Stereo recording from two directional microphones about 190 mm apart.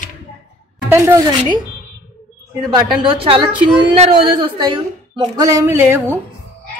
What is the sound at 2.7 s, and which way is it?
A woman's voice, 25° right (ahead or behind).